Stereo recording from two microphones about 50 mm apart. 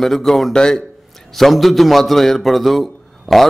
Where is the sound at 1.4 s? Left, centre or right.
Centre.